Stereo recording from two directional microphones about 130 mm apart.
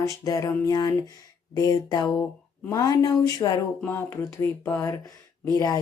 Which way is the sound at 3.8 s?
15° left (ahead or behind).